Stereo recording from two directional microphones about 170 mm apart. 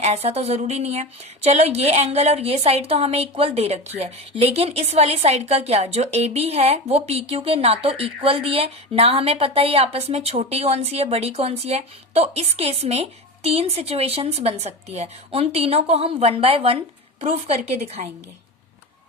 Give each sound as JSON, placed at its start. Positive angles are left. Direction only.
{"t": 0.0, "sound": "a woman's voice", "side_deg": -40}